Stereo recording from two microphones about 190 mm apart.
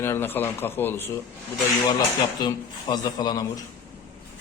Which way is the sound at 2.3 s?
20° left (ahead or behind).